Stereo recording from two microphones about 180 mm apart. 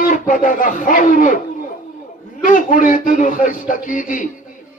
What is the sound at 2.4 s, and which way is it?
Speech, 50° left (ahead or behind).